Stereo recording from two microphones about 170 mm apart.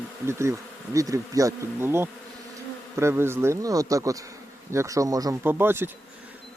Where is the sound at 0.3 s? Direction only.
15° right (ahead or behind).